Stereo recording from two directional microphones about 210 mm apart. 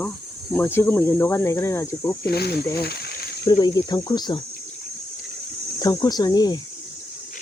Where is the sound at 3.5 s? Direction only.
20° left (ahead or behind).